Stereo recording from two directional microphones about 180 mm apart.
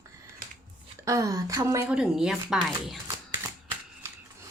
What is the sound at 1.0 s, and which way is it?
Speech, 20° right (ahead or behind).